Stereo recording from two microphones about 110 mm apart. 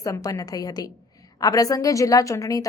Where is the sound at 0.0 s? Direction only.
30° left (ahead or behind).